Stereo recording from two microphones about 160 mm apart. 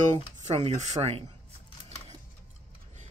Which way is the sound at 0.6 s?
40° right (ahead or behind).